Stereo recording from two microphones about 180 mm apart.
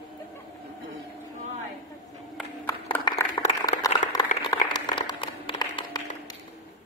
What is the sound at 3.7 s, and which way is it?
Applause, 20° left (ahead or behind).